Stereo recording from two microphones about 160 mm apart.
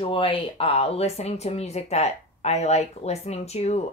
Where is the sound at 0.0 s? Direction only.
35° left (ahead or behind).